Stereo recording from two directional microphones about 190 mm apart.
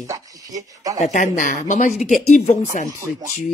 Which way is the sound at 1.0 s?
40° left (ahead or behind).